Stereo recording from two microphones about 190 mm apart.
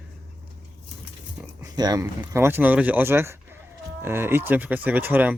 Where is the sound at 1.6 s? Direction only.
20° right (ahead or behind).